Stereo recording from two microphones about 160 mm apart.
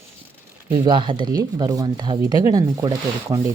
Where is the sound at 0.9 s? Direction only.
30° right (ahead or behind).